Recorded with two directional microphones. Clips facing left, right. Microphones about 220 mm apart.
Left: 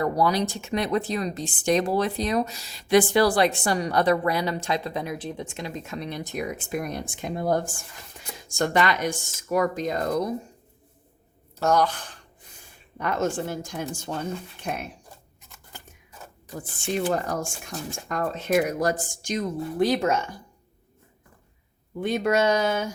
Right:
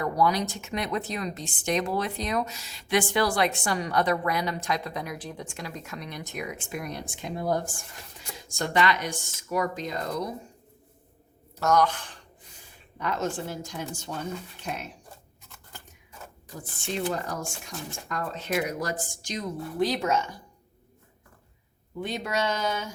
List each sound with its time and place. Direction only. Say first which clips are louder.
0.0 s speech: left 2 dB; 35° left (ahead or behind); by 10.2 s 50° left (ahead or behind)
11.6 s speech: left 1 dB; 30° left (ahead or behind)
13.0 s speech: left 4 dB; 50° left (ahead or behind)
17.1 s speech: left 5 dB; 50° left (ahead or behind)
22.0 s speech: left 7 dB; 50° left (ahead or behind)